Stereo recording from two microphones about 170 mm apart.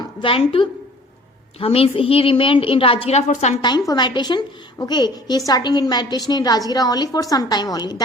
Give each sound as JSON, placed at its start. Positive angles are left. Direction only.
{"t": 0.2, "sound": "a woman's voice", "side_deg": 30}
{"t": 3.6, "sound": "a woman's voice", "side_deg": 25}